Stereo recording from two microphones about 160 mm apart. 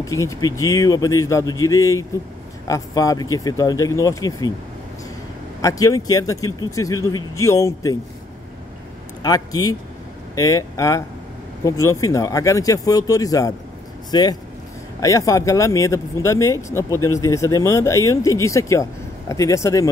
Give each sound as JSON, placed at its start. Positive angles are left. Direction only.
{"t": 0.0, "sound": "speech", "side_deg": 20}
{"t": 5.6, "sound": "speech", "side_deg": 20}
{"t": 9.2, "sound": "speech", "side_deg": 25}